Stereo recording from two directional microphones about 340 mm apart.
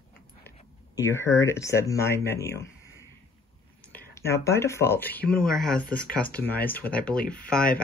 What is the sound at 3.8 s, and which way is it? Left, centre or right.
Speech, centre.